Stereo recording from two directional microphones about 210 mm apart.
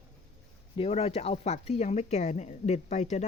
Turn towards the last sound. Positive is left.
turn(degrees=35)  # may be behind; listen again after turning